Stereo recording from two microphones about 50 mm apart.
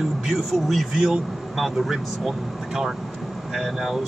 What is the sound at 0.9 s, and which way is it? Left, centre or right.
Speech, centre.